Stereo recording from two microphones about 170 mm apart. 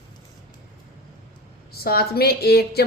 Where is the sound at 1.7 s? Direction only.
65° left (ahead or behind).